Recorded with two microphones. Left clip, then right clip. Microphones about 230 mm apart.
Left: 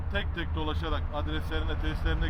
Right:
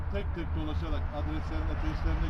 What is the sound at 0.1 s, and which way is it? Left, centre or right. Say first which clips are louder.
Speech: left 5 dB; centre.